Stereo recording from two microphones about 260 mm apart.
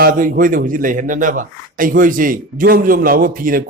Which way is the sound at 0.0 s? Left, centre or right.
Right.